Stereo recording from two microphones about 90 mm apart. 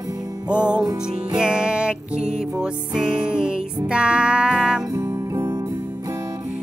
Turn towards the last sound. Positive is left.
turn(degrees=-10)  # may be behind; listen again after turning